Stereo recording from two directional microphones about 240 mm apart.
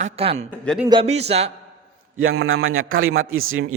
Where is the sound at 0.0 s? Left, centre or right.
Right.